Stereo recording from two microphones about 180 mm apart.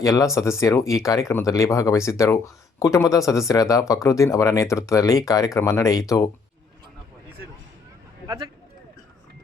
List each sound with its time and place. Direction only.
0.0 s speech: 20° left (ahead or behind)